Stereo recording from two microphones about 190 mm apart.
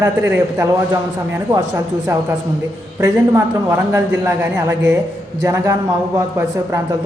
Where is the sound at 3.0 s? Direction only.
15° right (ahead or behind).